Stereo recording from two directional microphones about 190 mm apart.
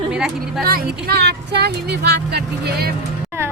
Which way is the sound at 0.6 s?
50° right (ahead or behind).